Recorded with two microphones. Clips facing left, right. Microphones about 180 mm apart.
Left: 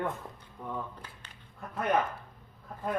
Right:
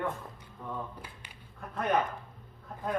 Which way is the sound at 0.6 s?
10° left (ahead or behind).